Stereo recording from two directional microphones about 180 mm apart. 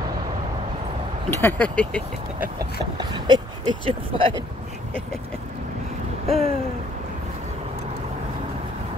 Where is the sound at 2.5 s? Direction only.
25° right (ahead or behind).